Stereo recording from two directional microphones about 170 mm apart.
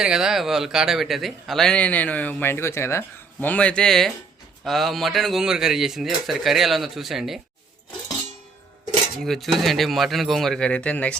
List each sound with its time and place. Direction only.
0.0 s a man's voice: 5° right (ahead or behind)
9.2 s a man's voice: centre (ahead or behind)